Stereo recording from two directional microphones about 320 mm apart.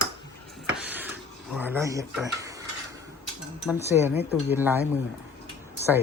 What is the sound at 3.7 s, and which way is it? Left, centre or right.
Speech, centre.